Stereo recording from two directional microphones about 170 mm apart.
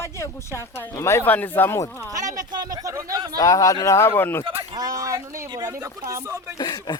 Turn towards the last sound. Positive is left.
turn(degrees=25)  # may be behind; listen again after turning